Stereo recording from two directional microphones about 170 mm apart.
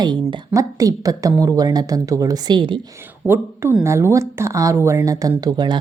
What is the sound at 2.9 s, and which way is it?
A woman's voice, 10° right (ahead or behind).